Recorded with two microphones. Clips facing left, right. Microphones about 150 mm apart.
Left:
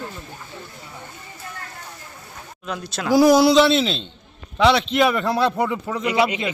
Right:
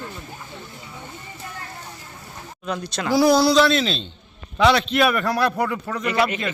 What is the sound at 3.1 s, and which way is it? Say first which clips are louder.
A man's voice: left 3 dB; 15° left (ahead or behind).